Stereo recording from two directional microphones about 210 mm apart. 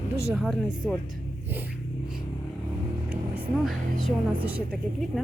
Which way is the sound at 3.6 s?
5° right (ahead or behind).